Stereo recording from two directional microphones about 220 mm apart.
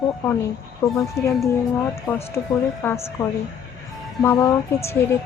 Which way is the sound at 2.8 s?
10° left (ahead or behind).